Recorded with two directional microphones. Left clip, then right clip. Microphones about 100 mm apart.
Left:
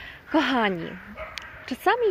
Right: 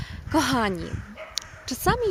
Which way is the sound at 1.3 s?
40° right (ahead or behind).